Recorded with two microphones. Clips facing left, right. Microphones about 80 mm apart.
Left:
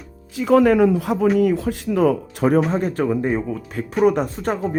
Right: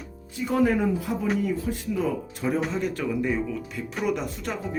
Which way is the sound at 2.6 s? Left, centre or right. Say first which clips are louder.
Left 7 dB; left.